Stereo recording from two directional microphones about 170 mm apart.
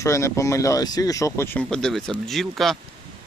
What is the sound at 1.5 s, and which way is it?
Speech, 5° left (ahead or behind).